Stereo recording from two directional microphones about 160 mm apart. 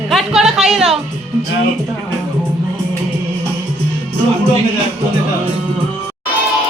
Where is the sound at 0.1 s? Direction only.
Centre (ahead or behind).